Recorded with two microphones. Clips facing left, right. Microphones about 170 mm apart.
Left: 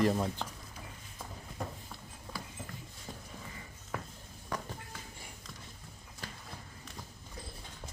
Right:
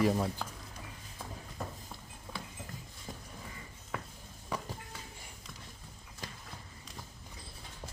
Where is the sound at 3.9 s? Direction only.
Centre (ahead or behind).